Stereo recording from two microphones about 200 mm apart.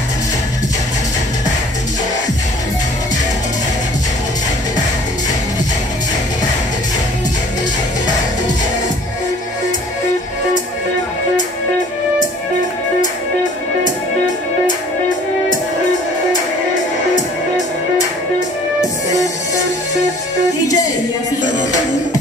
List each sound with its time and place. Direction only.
20.6 s music: 15° left (ahead or behind)